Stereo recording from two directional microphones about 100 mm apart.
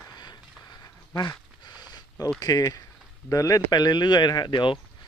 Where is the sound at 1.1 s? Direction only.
45° left (ahead or behind).